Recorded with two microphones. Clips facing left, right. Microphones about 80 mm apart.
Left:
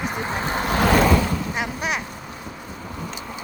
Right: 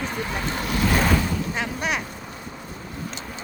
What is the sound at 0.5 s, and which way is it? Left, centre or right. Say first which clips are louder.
Vehicle: left 4 dB; left.